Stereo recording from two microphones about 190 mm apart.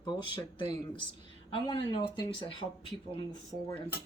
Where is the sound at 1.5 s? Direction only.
25° left (ahead or behind).